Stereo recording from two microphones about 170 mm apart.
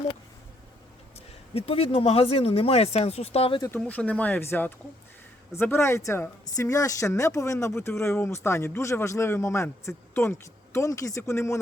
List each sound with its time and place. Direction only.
1.5 s speech: 35° left (ahead or behind)
3.8 s a woman's voice: 10° left (ahead or behind)